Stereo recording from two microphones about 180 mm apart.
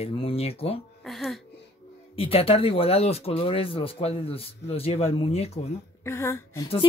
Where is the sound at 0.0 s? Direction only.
35° left (ahead or behind).